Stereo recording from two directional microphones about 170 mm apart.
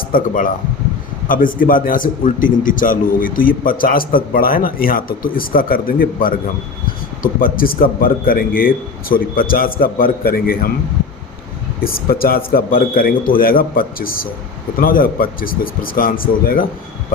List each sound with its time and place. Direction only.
0.0 s a man's voice: 55° left (ahead or behind)
11.8 s a man's voice: 60° left (ahead or behind)